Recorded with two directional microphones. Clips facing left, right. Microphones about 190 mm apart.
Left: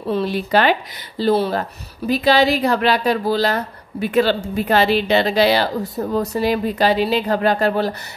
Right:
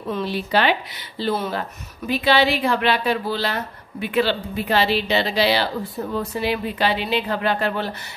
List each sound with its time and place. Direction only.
0.3 s speech: 45° left (ahead or behind)